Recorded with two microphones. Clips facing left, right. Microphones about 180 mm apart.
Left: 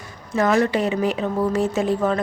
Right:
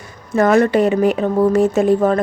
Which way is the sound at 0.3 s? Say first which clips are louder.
Right 6 dB; 50° right (ahead or behind).